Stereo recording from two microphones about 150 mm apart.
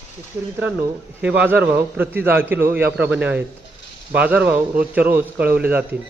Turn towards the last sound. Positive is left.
turn(degrees=-10)  # may be behind; listen again after turning